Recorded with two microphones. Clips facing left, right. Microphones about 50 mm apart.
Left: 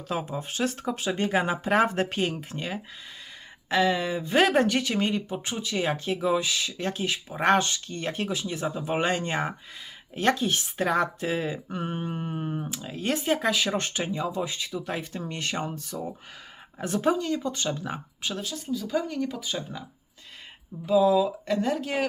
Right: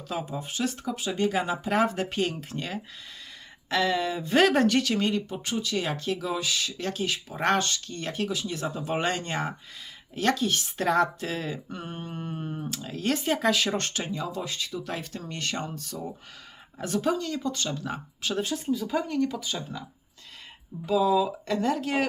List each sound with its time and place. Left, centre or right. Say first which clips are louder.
0.1 s speech: left 2 dB; left
2.2 s speech: left 1 dB; centre; by 8.4 s left
8.4 s speech: left 1 dB; centre
10.8 s speech: right 2 dB; centre
16.8 s speech: left 2 dB; left
18.6 s speech: right 1 dB; centre
19.0 s speech: right 2 dB; centre
20.8 s speech: left 2 dB; centre